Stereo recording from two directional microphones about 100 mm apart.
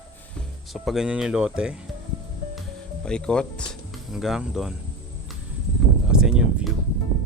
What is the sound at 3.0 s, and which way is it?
Speech, 10° left (ahead or behind).